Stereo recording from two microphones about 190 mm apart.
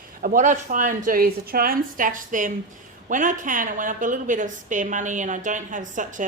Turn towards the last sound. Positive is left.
turn(degrees=-40)  # may be behind; listen again after turning